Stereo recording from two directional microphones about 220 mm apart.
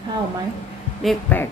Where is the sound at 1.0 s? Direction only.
5° left (ahead or behind).